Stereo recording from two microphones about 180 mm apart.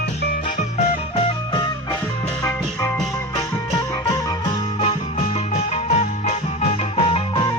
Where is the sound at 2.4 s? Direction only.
15° left (ahead or behind).